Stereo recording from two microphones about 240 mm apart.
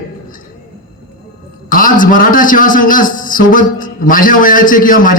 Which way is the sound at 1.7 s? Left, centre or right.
Left.